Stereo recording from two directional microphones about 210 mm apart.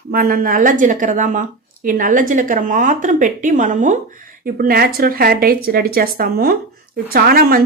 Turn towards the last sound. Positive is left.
turn(degrees=-45)  # may be behind; listen again after turning